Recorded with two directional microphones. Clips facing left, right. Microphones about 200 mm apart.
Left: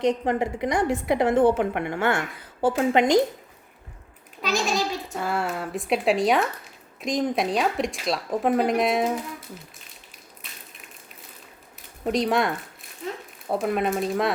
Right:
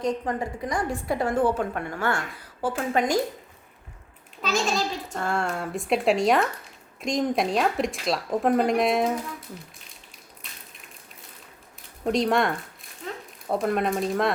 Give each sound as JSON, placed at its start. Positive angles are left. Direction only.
{"t": 0.0, "sound": "a woman's voice", "side_deg": 20}
{"t": 4.6, "sound": "speech", "side_deg": 5}
{"t": 12.0, "sound": "speech", "side_deg": 0}